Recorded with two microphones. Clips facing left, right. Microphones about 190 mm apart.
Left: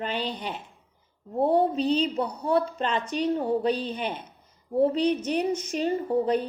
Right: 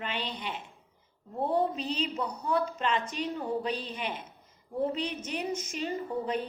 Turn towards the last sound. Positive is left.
turn(degrees=35)  # may be behind; listen again after turning